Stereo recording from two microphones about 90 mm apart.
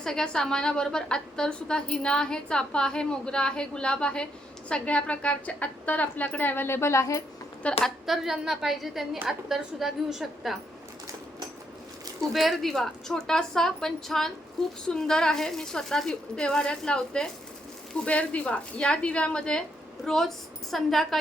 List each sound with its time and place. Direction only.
0.0 s a woman's voice: 5° left (ahead or behind); by 7.2 s 35° left (ahead or behind)
7.9 s a woman's voice: centre (ahead or behind)
12.2 s a woman's voice: centre (ahead or behind)